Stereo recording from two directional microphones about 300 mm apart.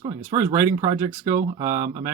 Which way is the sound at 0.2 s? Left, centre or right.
Centre.